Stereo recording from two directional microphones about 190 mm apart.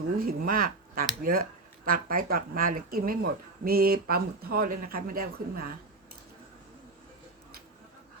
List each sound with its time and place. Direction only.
0.3 s speech: 50° right (ahead or behind)